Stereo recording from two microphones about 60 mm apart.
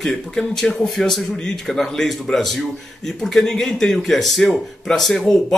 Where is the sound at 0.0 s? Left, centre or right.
Centre.